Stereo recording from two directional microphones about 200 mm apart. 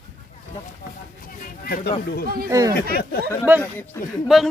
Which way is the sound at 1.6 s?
45° left (ahead or behind).